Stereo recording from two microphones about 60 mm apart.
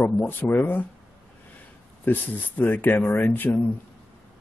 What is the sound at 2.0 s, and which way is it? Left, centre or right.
Speech, left.